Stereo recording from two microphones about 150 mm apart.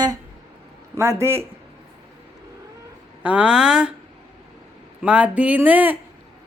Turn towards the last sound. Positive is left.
turn(degrees=-10)  # may be behind; listen again after turning